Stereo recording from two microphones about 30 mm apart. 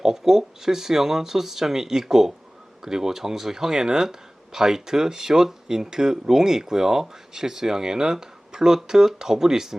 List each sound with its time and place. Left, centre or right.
0.0 s speech: centre